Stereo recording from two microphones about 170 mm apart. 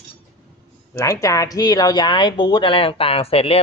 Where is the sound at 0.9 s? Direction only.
20° left (ahead or behind).